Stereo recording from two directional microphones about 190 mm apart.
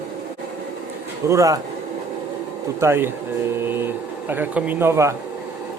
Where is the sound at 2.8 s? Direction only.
10° right (ahead or behind).